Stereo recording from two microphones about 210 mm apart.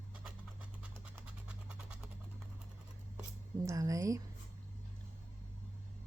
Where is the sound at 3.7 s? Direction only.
15° right (ahead or behind).